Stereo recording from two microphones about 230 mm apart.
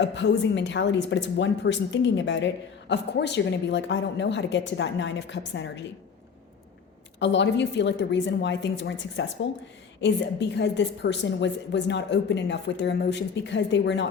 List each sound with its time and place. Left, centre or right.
0.0 s a woman's voice: left
7.2 s a woman's voice: left